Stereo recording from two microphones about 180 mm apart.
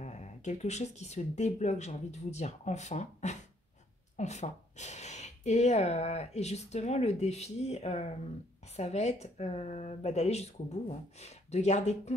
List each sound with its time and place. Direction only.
0.0 s speech: 40° left (ahead or behind)